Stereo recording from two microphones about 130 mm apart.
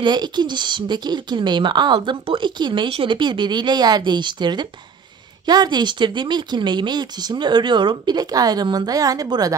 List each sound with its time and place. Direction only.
0.0 s speech: 35° right (ahead or behind)